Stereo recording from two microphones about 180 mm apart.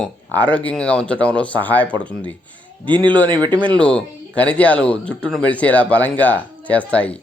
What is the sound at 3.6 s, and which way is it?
Speech, 5° left (ahead or behind).